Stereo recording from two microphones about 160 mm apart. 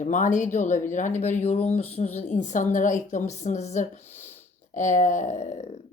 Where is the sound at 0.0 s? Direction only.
50° left (ahead or behind).